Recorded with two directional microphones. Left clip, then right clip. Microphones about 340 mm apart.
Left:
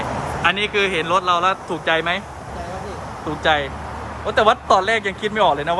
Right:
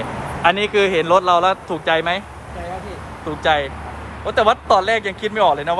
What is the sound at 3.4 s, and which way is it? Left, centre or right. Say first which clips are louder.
Speech: right 1 dB; centre.